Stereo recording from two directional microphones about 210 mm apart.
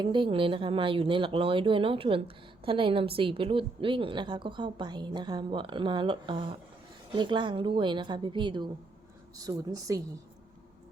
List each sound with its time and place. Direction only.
0.0 s a woman's voice: 25° right (ahead or behind)